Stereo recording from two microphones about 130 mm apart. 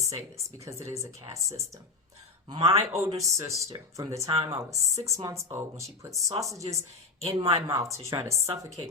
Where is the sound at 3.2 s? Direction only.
25° right (ahead or behind).